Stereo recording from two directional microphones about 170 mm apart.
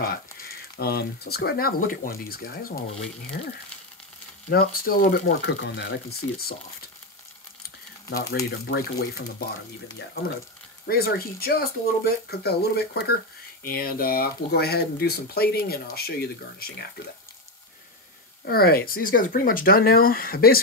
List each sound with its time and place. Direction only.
0.0 s speech: 60° left (ahead or behind)
4.5 s speech: 60° left (ahead or behind); by 6.5 s 75° left (ahead or behind)
8.5 s speech: 70° left (ahead or behind)
13.7 s speech: 60° left (ahead or behind)
18.4 s speech: 65° left (ahead or behind)